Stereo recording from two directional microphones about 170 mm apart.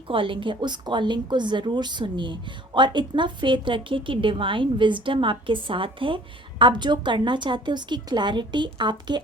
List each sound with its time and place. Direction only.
0.1 s a woman's voice: 30° right (ahead or behind)